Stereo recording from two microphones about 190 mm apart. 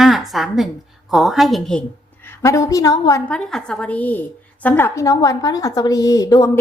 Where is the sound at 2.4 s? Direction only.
15° left (ahead or behind).